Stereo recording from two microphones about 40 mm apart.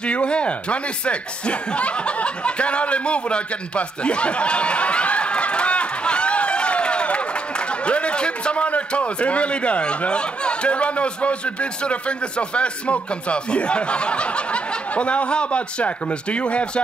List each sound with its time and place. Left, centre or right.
0.0 s speech: left